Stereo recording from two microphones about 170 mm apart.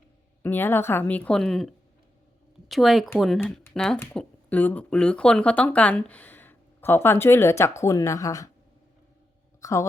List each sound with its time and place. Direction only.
0.4 s speech: 10° left (ahead or behind)
9.6 s speech: 20° left (ahead or behind)